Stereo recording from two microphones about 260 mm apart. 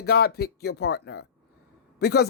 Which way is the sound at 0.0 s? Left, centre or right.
Left.